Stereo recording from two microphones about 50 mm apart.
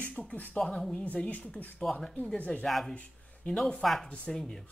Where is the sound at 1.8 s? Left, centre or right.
Centre.